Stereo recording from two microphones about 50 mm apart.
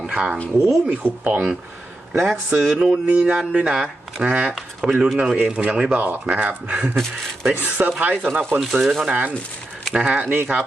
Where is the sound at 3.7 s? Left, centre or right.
Centre.